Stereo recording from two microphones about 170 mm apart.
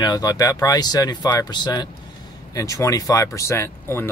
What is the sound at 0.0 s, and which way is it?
Speech, 25° left (ahead or behind).